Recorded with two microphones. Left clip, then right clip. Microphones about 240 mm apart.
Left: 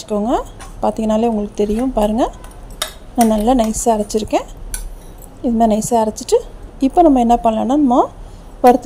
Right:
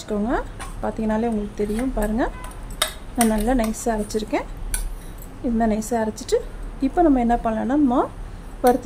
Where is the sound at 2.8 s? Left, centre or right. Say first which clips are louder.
Left 6 dB; centre.